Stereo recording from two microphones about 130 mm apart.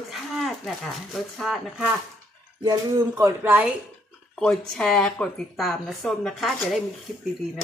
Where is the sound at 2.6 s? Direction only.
25° right (ahead or behind).